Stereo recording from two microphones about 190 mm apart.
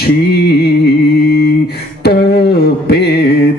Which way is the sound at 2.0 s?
60° left (ahead or behind).